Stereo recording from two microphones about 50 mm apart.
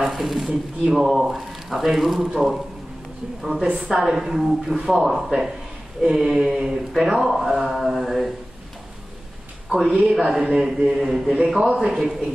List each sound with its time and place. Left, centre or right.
0.0 s speech: centre
9.7 s speech: centre
10.4 s a man's voice: centre
10.8 s speech: centre
11.3 s a man's voice: centre
11.8 s speech: centre